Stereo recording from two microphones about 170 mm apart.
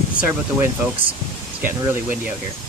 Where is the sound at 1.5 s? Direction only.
10° right (ahead or behind).